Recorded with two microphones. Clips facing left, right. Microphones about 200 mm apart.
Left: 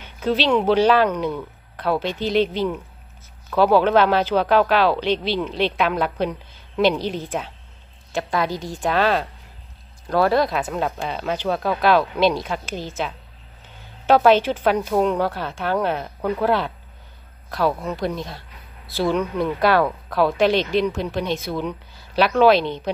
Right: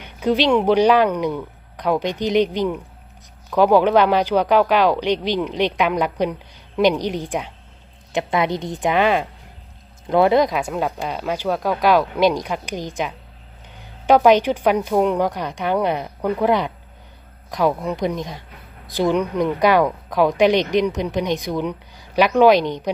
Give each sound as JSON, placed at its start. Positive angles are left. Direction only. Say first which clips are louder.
{"t": 0.0, "sound": "a woman's voice", "louder": "right 3 dB", "side_deg": -15}